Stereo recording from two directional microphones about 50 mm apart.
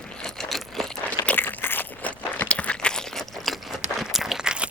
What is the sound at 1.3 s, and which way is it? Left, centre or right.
Crunch, left.